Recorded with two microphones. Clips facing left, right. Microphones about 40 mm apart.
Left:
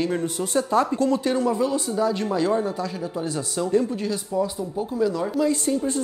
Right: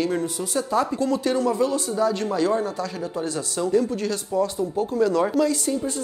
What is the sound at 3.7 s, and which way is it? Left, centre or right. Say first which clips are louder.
Speech: right 1 dB; left.